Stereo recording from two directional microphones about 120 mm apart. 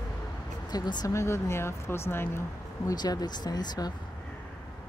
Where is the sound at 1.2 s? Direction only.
20° left (ahead or behind).